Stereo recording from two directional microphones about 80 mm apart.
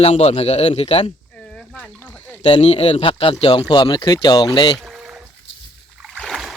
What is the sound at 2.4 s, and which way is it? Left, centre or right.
Speech, left.